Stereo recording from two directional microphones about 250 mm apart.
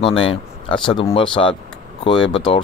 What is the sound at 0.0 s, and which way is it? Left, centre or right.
Speech, left.